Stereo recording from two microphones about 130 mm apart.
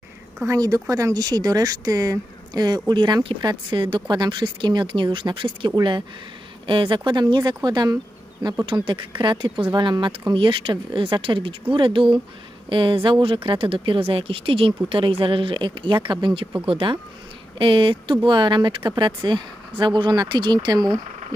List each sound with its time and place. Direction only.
0.5 s speech: 25° right (ahead or behind)